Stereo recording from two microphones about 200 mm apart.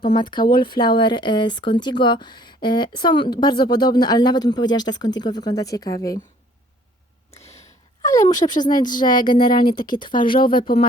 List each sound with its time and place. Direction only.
0.2 s speech: 25° left (ahead or behind)
8.0 s speech: 20° left (ahead or behind)
9.7 s speech: 45° left (ahead or behind)
10.0 s speech: 25° left (ahead or behind)
10.3 s speech: 45° left (ahead or behind)